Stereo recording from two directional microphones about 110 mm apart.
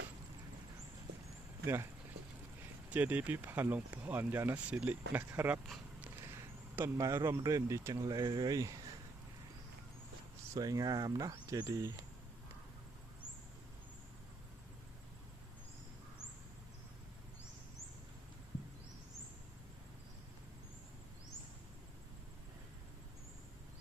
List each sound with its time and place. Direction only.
1.6 s speech: 25° right (ahead or behind)
2.9 s speech: 15° right (ahead or behind)
8.1 s speech: 40° right (ahead or behind)
10.5 s speech: 35° right (ahead or behind)